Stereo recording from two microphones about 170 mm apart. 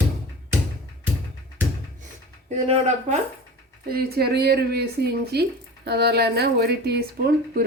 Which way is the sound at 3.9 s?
65° right (ahead or behind).